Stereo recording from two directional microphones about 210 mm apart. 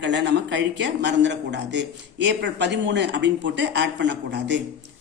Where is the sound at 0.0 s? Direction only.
55° right (ahead or behind).